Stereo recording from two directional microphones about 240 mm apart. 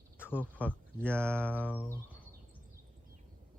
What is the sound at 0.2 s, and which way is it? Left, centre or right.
Speech, centre.